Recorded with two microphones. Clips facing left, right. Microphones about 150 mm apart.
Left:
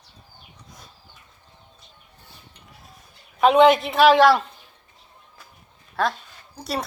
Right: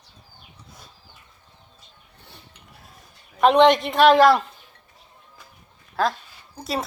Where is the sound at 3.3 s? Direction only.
Centre (ahead or behind).